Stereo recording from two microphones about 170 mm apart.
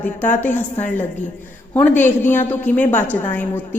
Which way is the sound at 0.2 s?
10° left (ahead or behind).